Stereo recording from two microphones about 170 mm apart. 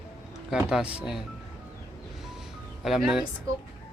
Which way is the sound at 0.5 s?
5° right (ahead or behind).